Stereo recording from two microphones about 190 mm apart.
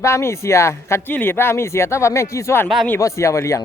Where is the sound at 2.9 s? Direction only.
15° left (ahead or behind).